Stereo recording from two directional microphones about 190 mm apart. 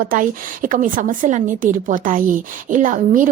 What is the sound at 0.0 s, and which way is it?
A woman's voice, 45° right (ahead or behind).